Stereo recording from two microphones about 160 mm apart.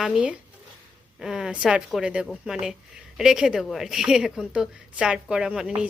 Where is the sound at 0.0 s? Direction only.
5° right (ahead or behind).